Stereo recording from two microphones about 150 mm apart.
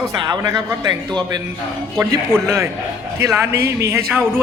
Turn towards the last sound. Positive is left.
turn(degrees=-20)  # may be behind; listen again after turning